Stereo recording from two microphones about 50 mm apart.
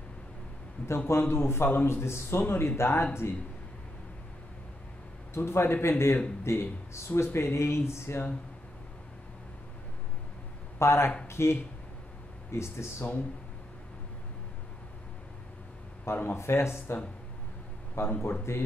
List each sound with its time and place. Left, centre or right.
0.8 s a man's voice: left
5.3 s speech: left
10.8 s speech: left
16.1 s a man's voice: left
16.3 s speech: left